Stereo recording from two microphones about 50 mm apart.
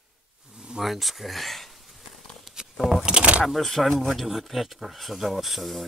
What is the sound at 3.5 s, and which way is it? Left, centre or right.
Speech, centre.